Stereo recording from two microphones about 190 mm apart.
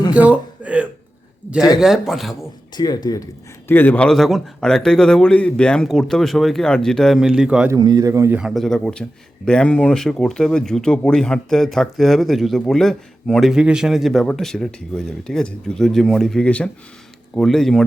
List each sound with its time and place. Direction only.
0.1 s a sound: 5° right (ahead or behind)
1.8 s speech: centre (ahead or behind)
2.7 s speech: 20° left (ahead or behind); by 7.7 s 5° right (ahead or behind)
7.7 s a man's voice: 20° right (ahead or behind); by 17.8 s centre (ahead or behind)